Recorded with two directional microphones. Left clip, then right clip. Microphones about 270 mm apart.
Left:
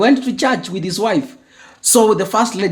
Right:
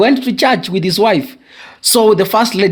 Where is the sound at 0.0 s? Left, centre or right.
Right.